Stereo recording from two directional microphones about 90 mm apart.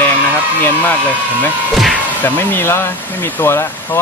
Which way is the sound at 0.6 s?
20° left (ahead or behind).